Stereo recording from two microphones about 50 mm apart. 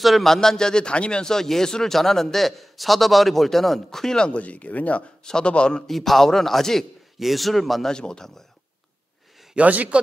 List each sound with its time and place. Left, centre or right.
0.0 s speech: centre
4.3 s speech: left
5.2 s speech: centre
5.9 s a man's voice: centre
7.9 s speech: centre
9.6 s a man's voice: right